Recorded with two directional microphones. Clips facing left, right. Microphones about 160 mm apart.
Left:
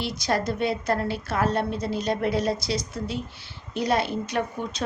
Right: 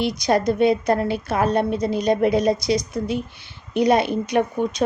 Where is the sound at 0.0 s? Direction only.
15° right (ahead or behind).